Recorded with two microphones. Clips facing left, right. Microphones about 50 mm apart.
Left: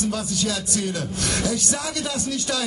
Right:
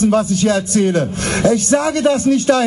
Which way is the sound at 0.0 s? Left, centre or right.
Right.